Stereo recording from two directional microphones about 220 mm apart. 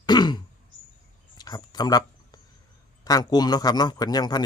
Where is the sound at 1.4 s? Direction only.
20° left (ahead or behind).